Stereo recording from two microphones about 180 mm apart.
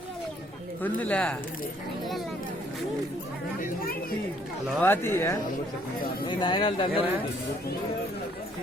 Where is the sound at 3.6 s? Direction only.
55° left (ahead or behind).